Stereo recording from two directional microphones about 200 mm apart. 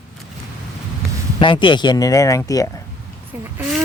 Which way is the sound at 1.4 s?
25° left (ahead or behind).